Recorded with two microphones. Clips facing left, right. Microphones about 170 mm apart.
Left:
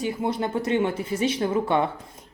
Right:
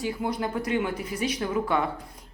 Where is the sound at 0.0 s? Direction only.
25° left (ahead or behind).